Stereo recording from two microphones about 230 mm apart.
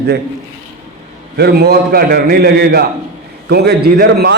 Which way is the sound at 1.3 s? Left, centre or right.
Right.